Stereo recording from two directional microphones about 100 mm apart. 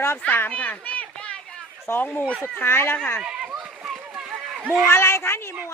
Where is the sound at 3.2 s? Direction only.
10° right (ahead or behind).